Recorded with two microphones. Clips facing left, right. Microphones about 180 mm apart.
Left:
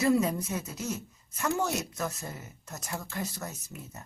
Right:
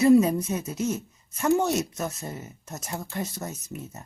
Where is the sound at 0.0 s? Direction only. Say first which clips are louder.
Right 8 dB; 20° right (ahead or behind).